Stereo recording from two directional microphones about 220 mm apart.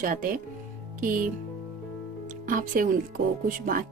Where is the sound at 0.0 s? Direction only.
40° right (ahead or behind).